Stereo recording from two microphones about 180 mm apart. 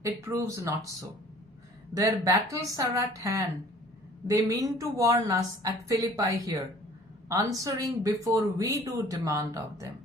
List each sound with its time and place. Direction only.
0.0 s speech: 15° right (ahead or behind)
1.9 s a woman's voice: 20° right (ahead or behind)